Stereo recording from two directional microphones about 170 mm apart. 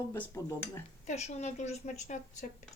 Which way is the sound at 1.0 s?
40° left (ahead or behind).